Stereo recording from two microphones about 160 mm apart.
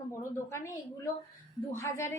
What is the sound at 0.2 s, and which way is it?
A woman's voice, 15° left (ahead or behind).